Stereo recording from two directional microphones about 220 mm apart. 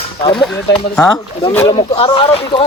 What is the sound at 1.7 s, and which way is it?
Speech, 20° left (ahead or behind).